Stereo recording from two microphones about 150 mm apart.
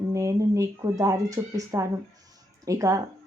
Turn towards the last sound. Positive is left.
turn(degrees=-20)  # may be behind; listen again after turning